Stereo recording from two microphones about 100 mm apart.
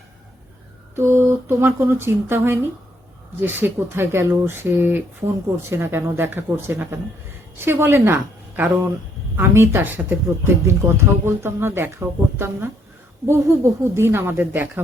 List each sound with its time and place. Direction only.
0.9 s speech: 25° right (ahead or behind)